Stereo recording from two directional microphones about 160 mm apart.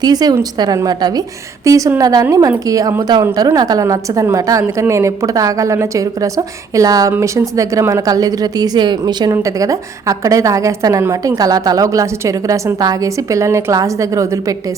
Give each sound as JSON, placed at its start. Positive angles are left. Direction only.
{"t": 0.0, "sound": "a woman's voice", "side_deg": -25}